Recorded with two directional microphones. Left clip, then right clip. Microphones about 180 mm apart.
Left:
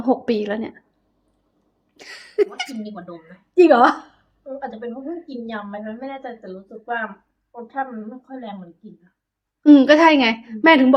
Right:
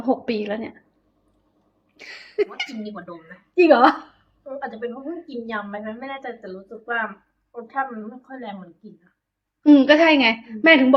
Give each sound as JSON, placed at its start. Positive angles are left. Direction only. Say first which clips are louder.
{"t": 0.0, "sound": "a woman's voice", "louder": "left 3 dB", "side_deg": 20}
{"t": 2.0, "sound": "a sound", "louder": "left 4 dB", "side_deg": 20}
{"t": 2.8, "sound": "a woman's voice", "louder": "even", "side_deg": 5}
{"t": 9.6, "sound": "a woman's voice", "louder": "left 2 dB", "side_deg": 20}